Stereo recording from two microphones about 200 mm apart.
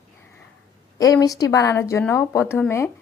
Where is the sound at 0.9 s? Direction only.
20° left (ahead or behind).